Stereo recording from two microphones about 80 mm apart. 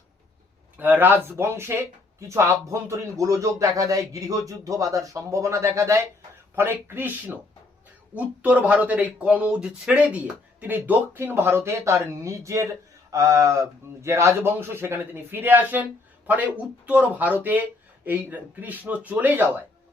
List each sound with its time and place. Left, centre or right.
0.8 s speech: right
8.1 s speech: centre